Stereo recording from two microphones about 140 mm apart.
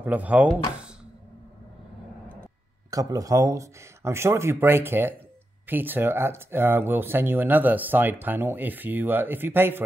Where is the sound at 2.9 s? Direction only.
25° right (ahead or behind).